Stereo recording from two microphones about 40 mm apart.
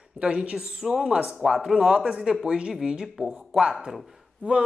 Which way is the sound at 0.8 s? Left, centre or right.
Centre.